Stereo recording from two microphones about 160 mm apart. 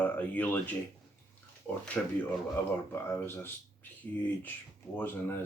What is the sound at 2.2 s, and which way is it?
Speech, 15° left (ahead or behind).